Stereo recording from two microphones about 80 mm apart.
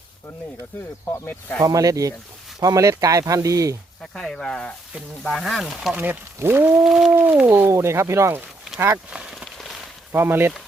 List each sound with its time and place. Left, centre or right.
1.2 s speech: left
1.6 s speech: right
4.0 s speech: centre
5.2 s speech: centre
6.0 s speech: right
6.8 s speech: centre
7.3 s speech: right
7.7 s speech: right
9.1 s a sound: centre
10.1 s speech: right